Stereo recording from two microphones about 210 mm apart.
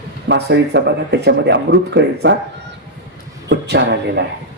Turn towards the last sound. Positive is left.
turn(degrees=-55)  # may be behind; listen again after turning